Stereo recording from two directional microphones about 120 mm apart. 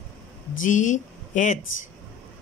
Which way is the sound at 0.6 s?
90° left.